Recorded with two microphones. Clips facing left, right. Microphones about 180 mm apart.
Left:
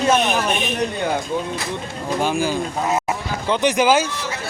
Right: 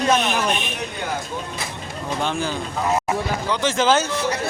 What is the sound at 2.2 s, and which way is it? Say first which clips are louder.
Speech: left 5 dB; 10° left (ahead or behind).